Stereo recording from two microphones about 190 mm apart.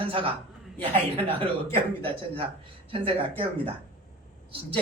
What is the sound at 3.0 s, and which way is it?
Speech, 30° right (ahead or behind).